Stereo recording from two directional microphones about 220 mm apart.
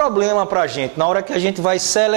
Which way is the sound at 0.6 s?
15° right (ahead or behind).